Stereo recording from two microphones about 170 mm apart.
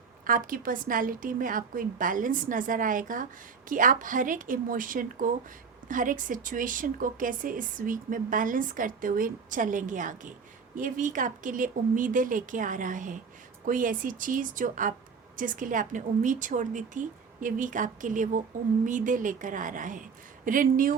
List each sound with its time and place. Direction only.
0.3 s speech: 55° right (ahead or behind)